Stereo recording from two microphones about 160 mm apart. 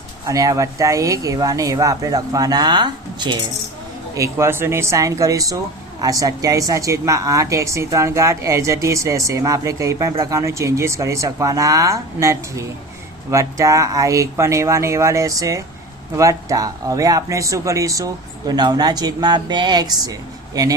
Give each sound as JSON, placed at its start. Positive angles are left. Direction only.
{"t": 0.3, "sound": "a woman's voice", "side_deg": -20}